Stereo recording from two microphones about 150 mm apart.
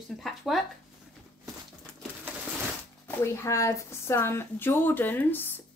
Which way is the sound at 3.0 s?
20° left (ahead or behind).